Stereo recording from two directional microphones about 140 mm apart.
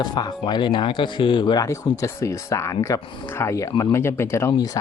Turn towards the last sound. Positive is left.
turn(degrees=20)  # may be behind; listen again after turning